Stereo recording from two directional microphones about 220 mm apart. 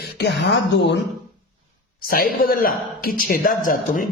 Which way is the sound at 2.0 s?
40° left (ahead or behind).